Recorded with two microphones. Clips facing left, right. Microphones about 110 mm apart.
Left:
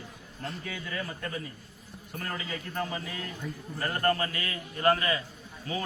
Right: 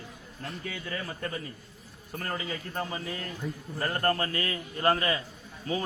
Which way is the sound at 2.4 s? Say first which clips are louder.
Even; 30° right (ahead or behind).